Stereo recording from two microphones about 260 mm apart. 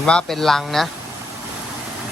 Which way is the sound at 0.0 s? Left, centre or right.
Centre.